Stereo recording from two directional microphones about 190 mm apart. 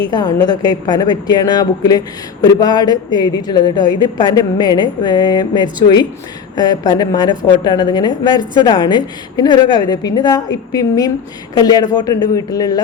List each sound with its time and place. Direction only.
0.1 s a woman's voice: 20° left (ahead or behind)